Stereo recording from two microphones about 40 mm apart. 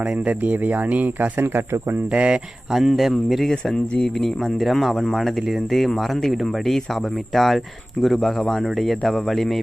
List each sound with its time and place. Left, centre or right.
0.0 s speech: right
1.4 s speech: right
2.1 s speech: right
2.7 s speech: centre